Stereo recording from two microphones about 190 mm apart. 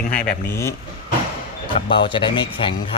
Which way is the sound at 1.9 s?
25° left (ahead or behind).